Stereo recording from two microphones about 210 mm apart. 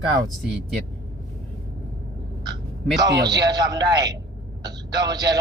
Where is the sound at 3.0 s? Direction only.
20° right (ahead or behind).